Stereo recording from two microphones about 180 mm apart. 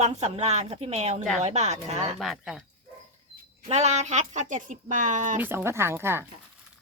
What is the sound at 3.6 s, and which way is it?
Speech, 40° right (ahead or behind).